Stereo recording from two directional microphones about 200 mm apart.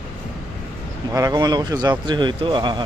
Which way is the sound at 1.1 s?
15° right (ahead or behind).